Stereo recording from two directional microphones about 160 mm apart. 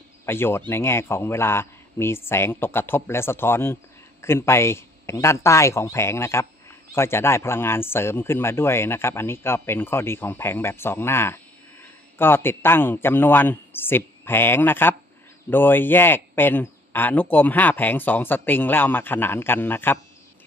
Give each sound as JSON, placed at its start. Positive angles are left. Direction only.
{"t": 0.2, "sound": "a man's voice", "side_deg": 15}